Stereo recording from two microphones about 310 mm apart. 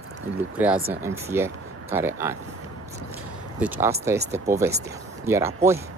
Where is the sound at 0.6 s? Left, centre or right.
Centre.